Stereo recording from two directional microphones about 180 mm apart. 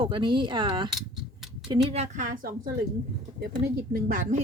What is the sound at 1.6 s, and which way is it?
Speech, 30° right (ahead or behind).